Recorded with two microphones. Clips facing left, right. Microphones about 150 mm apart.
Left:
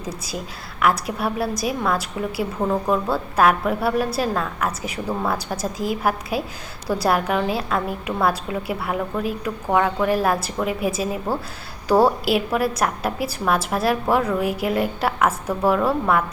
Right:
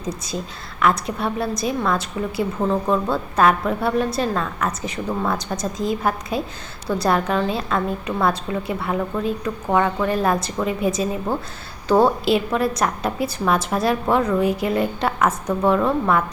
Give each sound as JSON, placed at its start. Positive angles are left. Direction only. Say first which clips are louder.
{"t": 0.0, "sound": "a woman's voice", "louder": "right 2 dB", "side_deg": 10}